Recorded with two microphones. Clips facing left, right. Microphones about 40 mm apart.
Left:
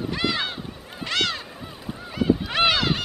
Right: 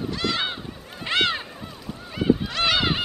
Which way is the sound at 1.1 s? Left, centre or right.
Right.